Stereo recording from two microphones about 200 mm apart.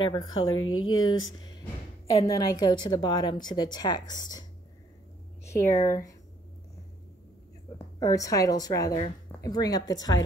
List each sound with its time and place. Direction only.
0.0 s a woman's voice: 25° left (ahead or behind)
0.4 s speech: 90° left
2.0 s a woman's voice: 15° left (ahead or behind)
5.4 s a sound: 15° left (ahead or behind)
5.9 s a woman's voice: 15° left (ahead or behind)
8.0 s a woman's voice: 15° left (ahead or behind)